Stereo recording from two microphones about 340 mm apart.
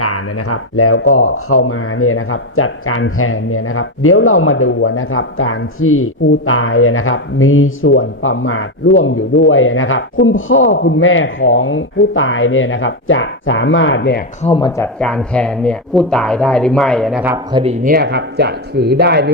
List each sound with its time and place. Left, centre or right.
0.0 s speech: left
14.4 s speech: centre; by 19.3 s right